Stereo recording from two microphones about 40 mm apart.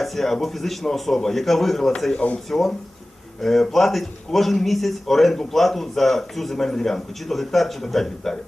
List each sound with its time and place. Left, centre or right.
0.0 s a man's voice: centre
2.1 s speech: left
2.5 s a man's voice: centre